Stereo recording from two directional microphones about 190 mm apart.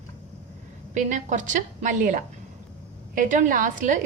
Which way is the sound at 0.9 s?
40° right (ahead or behind).